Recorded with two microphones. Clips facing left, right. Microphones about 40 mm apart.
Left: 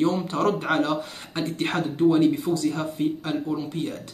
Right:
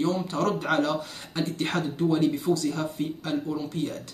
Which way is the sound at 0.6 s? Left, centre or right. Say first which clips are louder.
Left 2 dB; centre.